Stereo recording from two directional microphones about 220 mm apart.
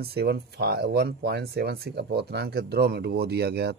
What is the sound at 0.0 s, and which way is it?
Speech, 45° right (ahead or behind).